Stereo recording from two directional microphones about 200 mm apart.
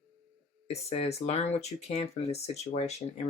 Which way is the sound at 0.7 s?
30° left (ahead or behind).